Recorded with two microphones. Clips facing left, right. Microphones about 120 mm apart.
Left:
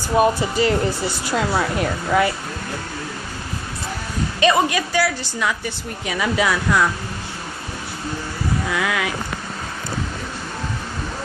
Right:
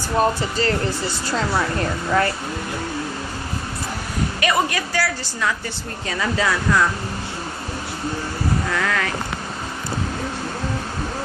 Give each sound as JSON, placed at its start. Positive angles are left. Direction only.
{"t": 0.1, "sound": "speech", "side_deg": 10}
{"t": 4.4, "sound": "a woman's voice", "side_deg": 20}
{"t": 8.7, "sound": "speech", "side_deg": 10}